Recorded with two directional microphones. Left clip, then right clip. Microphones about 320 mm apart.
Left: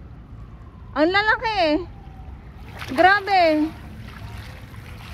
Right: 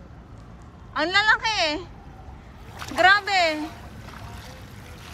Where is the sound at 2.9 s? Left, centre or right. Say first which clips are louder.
Left 2 dB; centre.